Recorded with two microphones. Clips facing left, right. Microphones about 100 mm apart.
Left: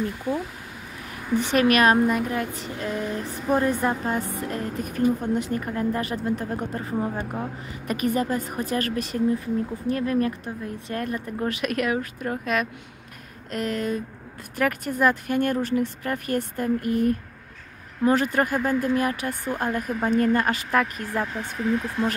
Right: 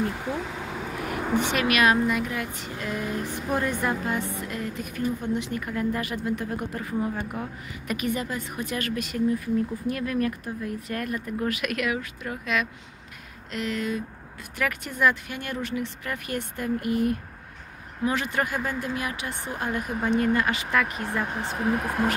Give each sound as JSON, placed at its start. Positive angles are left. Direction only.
{"t": 0.0, "sound": "a sound", "side_deg": -85}
{"t": 1.4, "sound": "speech", "side_deg": 40}
{"t": 21.3, "sound": "speech", "side_deg": -40}